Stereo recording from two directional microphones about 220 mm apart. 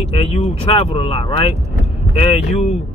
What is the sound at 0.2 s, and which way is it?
A man's voice, 25° left (ahead or behind).